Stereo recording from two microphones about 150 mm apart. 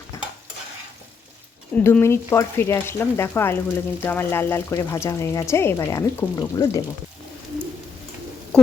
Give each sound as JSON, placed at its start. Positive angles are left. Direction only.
{"t": 1.7, "sound": "speech", "side_deg": 15}